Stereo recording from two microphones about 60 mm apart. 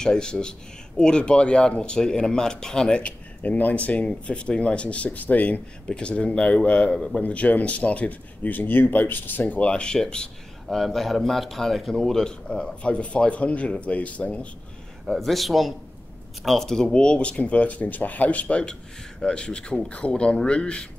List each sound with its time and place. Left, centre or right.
0.0 s speech: centre
5.9 s speech: centre
7.2 s speech: left
15.0 s a man's voice: centre